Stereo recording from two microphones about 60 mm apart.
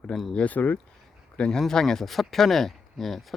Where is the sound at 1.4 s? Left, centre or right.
Centre.